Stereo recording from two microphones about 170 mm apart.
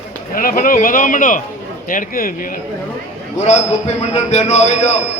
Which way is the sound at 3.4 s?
40° left (ahead or behind).